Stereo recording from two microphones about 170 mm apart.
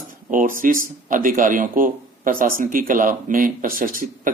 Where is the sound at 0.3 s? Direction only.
50° right (ahead or behind).